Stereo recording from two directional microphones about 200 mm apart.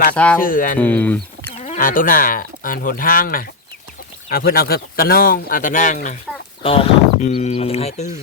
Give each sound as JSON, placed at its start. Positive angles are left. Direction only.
{"t": 0.3, "sound": "speech", "side_deg": 45}
{"t": 0.8, "sound": "speech", "side_deg": 10}
{"t": 1.6, "sound": "speech", "side_deg": 40}
{"t": 6.6, "sound": "speech", "side_deg": 25}